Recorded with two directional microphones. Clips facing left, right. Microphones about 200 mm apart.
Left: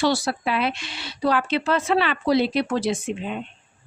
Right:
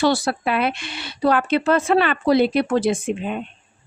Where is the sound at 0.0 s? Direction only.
55° right (ahead or behind).